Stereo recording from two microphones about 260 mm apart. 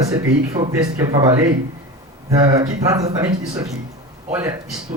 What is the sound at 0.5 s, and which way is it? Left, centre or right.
Speech, centre.